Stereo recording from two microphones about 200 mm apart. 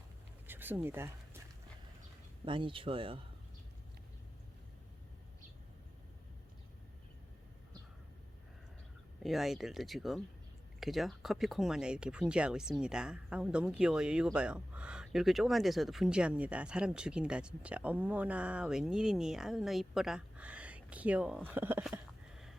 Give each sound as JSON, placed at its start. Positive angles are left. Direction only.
{"t": 0.4, "sound": "a sound", "side_deg": -10}
{"t": 2.4, "sound": "speech", "side_deg": -25}
{"t": 9.2, "sound": "speech", "side_deg": 0}